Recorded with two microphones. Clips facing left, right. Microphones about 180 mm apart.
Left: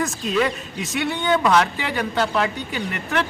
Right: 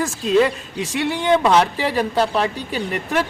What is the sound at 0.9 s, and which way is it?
Speech, 30° right (ahead or behind).